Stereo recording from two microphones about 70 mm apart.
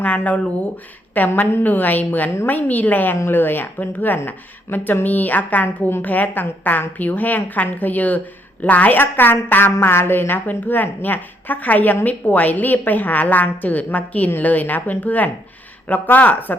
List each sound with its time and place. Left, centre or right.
0.3 s a woman's voice: left